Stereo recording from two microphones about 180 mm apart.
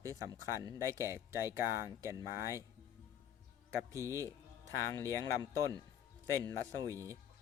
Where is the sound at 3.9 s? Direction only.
15° right (ahead or behind).